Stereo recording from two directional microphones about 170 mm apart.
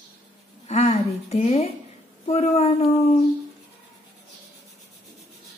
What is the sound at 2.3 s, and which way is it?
Speech, 35° left (ahead or behind).